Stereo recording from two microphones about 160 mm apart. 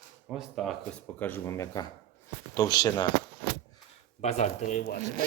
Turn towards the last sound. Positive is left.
turn(degrees=50)  # may be behind; listen again after turning